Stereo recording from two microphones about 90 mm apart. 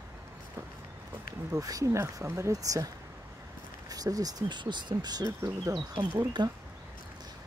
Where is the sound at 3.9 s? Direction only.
45° right (ahead or behind).